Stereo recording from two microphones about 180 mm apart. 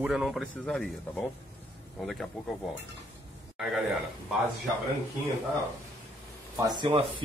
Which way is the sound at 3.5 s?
Centre (ahead or behind).